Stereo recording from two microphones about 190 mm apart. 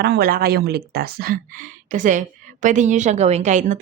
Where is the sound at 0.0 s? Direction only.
55° right (ahead or behind).